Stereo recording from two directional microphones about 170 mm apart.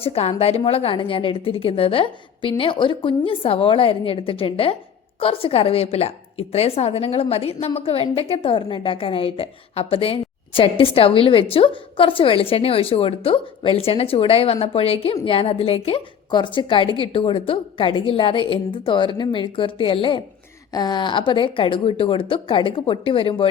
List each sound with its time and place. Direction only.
0.0 s a woman's voice: 35° left (ahead or behind)